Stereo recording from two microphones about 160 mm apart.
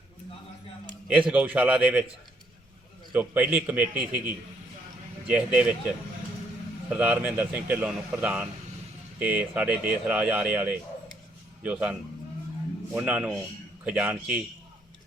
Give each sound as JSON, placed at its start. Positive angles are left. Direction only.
{"t": 1.3, "sound": "speech", "side_deg": -10}
{"t": 3.1, "sound": "speech", "side_deg": -10}
{"t": 5.2, "sound": "speech", "side_deg": -5}
{"t": 6.9, "sound": "speech", "side_deg": -10}